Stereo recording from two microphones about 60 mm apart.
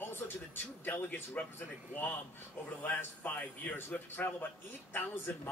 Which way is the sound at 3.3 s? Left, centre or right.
Left.